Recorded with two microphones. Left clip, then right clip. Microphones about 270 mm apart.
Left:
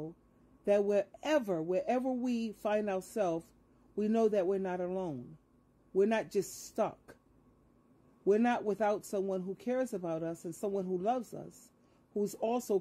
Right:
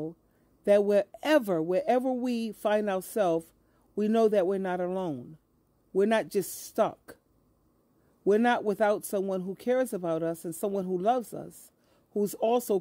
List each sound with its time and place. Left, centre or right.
0.7 s a man's voice: right
8.2 s a man's voice: right